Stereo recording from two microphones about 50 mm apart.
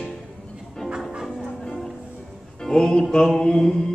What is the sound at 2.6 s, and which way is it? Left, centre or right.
Music, centre.